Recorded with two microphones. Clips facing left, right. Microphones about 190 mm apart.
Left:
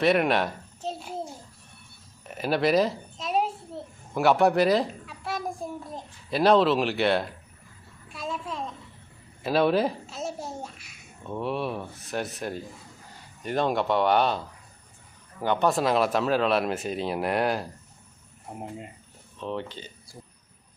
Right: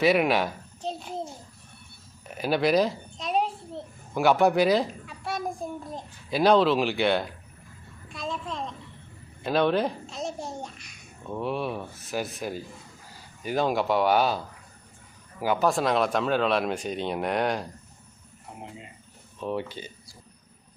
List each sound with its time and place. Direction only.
0.0 s a child's voice: centre (ahead or behind)
2.2 s a sound: centre (ahead or behind)
4.1 s speech: centre (ahead or behind)
8.1 s a sound: 5° left (ahead or behind)
9.4 s a child's voice: 5° left (ahead or behind)
18.5 s speech: 50° left (ahead or behind)
19.4 s speech: 10° right (ahead or behind)